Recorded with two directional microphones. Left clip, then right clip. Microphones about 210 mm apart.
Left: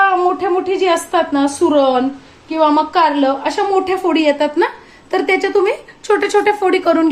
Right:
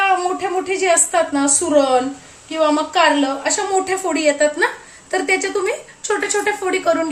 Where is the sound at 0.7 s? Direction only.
30° left (ahead or behind).